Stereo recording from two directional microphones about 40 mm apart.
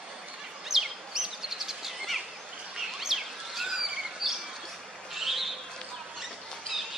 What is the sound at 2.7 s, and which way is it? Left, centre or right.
Chirp, centre.